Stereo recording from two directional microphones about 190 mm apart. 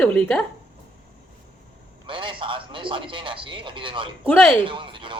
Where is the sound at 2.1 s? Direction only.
25° right (ahead or behind).